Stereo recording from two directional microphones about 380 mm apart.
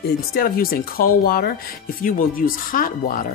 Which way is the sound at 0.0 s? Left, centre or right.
Left.